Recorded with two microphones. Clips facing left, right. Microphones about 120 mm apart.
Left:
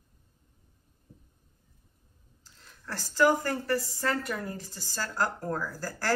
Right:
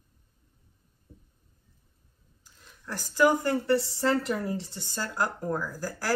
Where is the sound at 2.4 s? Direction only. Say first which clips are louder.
Right 1 dB; 15° right (ahead or behind).